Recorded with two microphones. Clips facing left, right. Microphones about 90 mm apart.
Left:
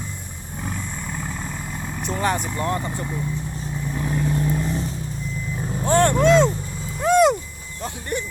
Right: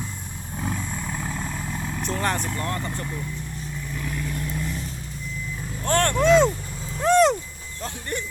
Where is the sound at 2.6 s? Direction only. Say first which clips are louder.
Left 4 dB; 15° left (ahead or behind).